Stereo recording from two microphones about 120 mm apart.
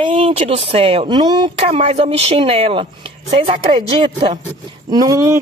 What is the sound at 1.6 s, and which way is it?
Speech, 60° right (ahead or behind).